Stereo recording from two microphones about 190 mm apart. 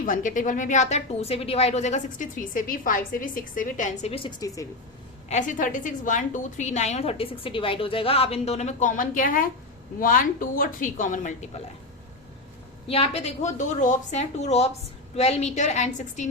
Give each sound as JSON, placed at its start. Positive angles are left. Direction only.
{"t": 0.0, "sound": "a woman's voice", "side_deg": 45}
{"t": 5.3, "sound": "a woman's voice", "side_deg": 40}
{"t": 12.9, "sound": "a woman's voice", "side_deg": 30}